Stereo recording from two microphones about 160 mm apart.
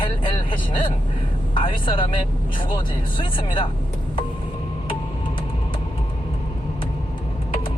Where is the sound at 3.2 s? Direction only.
30° left (ahead or behind).